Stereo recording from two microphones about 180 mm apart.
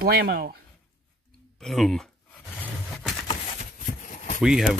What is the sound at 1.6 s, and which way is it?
Speech, centre (ahead or behind).